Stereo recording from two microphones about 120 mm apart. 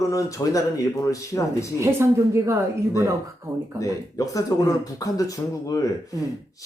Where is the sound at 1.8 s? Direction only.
20° right (ahead or behind).